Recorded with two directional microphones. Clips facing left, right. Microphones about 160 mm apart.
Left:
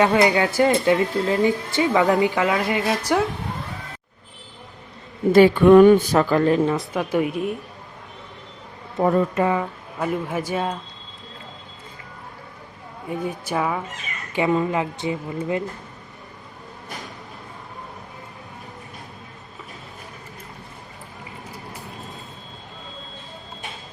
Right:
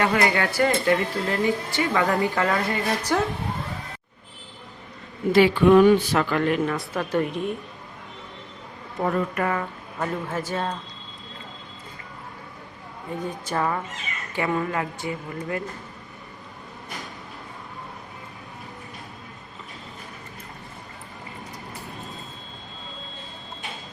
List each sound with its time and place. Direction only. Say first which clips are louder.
0.0 s speech: left 5 dB; 15° left (ahead or behind)
5.3 s speech: left 4 dB; 45° left (ahead or behind); by 6.8 s 30° left (ahead or behind)
6.9 s speech: left 3 dB; 10° left (ahead or behind)
9.0 s a woman's voice: left 5 dB; 25° left (ahead or behind)
13.1 s speech: left 3 dB; 10° left (ahead or behind)
14.3 s a woman's voice: left 5 dB; 20° left (ahead or behind)